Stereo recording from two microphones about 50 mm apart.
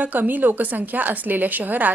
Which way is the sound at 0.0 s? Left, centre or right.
Right.